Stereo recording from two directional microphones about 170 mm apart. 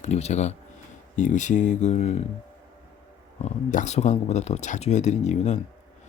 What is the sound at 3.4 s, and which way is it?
Speech, 45° left (ahead or behind).